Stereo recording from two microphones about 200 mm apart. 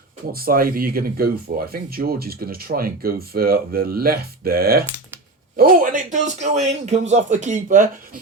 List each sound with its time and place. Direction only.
0.3 s a man's voice: 45° right (ahead or behind)